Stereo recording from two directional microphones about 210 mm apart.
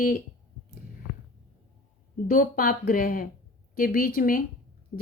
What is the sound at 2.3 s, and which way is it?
A woman's voice, 40° left (ahead or behind).